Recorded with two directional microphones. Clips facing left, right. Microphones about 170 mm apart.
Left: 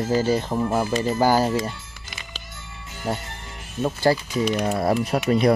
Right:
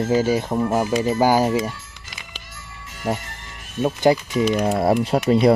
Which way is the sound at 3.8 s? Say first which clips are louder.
Right 3 dB; 15° right (ahead or behind).